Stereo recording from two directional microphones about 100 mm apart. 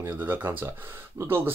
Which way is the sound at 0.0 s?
20° right (ahead or behind).